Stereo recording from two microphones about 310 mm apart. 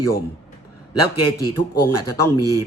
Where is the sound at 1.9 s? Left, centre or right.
Left.